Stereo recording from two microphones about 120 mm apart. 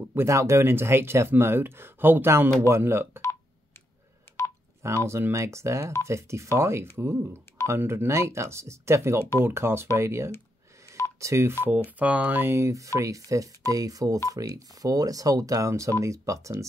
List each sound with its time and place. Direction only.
0.0 s speech: 20° right (ahead or behind)
4.8 s speech: 25° right (ahead or behind)
12.0 s speech: 10° right (ahead or behind)